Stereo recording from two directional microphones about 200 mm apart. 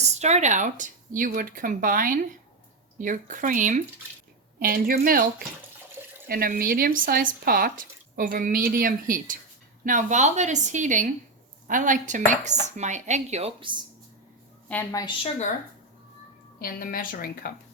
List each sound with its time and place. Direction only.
0.0 s speech: 35° right (ahead or behind)
14.7 s a woman's voice: 10° left (ahead or behind)
15.0 s speech: 30° left (ahead or behind)
16.6 s a woman's voice: 45° left (ahead or behind)